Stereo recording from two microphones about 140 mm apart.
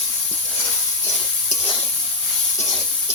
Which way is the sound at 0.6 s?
20° left (ahead or behind).